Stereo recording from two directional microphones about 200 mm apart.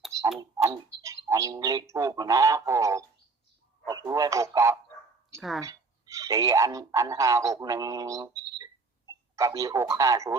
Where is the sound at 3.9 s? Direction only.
15° right (ahead or behind).